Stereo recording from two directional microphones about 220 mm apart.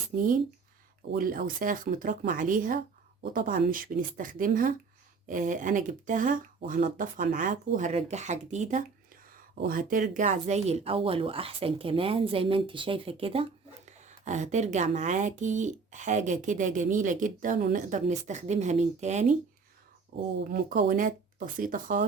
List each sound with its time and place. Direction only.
0.2 s speech: 40° right (ahead or behind)
20.4 s speech: 40° right (ahead or behind)